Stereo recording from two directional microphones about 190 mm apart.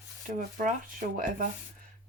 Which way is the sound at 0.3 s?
45° right (ahead or behind).